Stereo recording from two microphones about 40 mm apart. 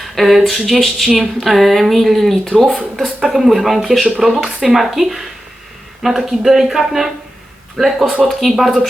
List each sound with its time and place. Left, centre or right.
0.2 s speech: centre
3.2 s speech: centre